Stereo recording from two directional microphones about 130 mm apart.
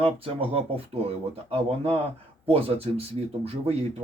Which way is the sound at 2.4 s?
50° right (ahead or behind).